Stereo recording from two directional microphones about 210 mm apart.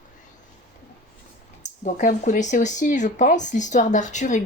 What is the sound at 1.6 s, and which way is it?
Speech, 35° left (ahead or behind).